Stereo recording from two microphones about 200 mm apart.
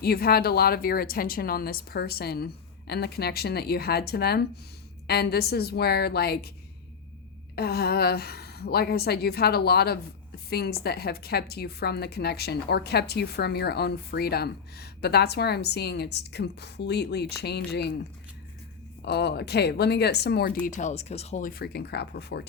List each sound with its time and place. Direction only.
0.0 s a woman's voice: 50° left (ahead or behind)
7.5 s a woman's voice: 50° left (ahead or behind)
19.0 s speech: 55° left (ahead or behind)
20.7 s a woman's voice: 40° left (ahead or behind); by 22.4 s 55° left (ahead or behind)